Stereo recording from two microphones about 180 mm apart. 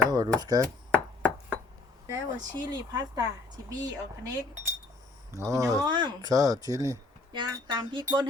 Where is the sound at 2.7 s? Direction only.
20° right (ahead or behind).